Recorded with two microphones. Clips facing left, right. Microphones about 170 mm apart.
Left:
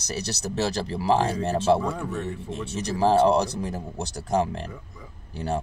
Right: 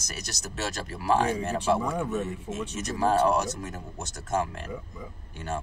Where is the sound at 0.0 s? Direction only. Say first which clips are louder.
Left 8 dB; 35° left (ahead or behind).